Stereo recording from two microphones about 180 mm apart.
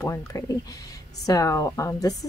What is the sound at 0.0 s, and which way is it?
A woman's voice, 15° left (ahead or behind).